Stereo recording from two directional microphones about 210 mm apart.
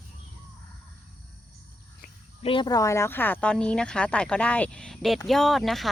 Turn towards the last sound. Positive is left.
turn(degrees=0)  # may be behind; listen again after turning